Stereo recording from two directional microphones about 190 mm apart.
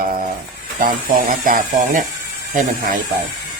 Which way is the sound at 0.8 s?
50° right (ahead or behind).